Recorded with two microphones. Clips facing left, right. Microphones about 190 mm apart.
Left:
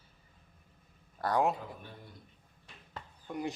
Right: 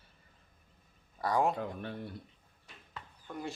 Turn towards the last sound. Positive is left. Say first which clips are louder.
# left 4 dB
turn(degrees=15)  # may be behind; listen again after turning